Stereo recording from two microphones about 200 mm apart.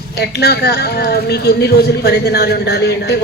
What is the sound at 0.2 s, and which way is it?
A woman's voice, 55° left (ahead or behind).